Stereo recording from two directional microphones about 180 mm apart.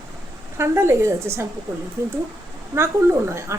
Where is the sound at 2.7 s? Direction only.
15° right (ahead or behind).